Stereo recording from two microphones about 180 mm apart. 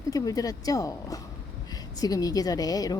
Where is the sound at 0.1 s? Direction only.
20° left (ahead or behind).